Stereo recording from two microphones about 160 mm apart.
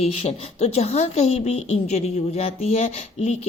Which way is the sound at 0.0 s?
40° left (ahead or behind).